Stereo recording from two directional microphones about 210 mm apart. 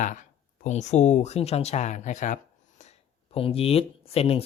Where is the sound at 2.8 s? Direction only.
30° left (ahead or behind).